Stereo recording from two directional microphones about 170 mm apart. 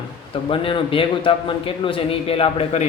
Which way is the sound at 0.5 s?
30° left (ahead or behind).